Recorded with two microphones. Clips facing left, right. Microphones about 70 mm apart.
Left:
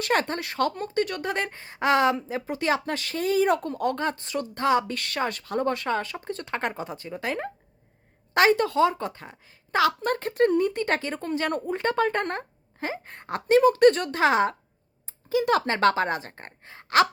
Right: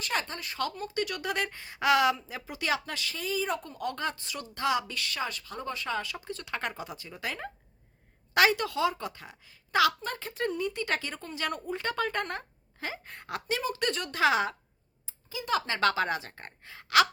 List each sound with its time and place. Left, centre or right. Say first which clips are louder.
0.0 s speech: left 8 dB; left
0.6 s a woman's voice: left 6 dB; left
10.0 s a woman's voice: left 10 dB; left
15.0 s speech: left 14 dB; left